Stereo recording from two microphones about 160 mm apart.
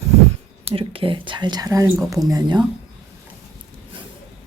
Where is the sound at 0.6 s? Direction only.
35° right (ahead or behind).